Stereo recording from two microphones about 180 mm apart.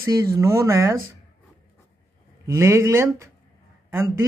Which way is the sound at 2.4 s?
15° right (ahead or behind).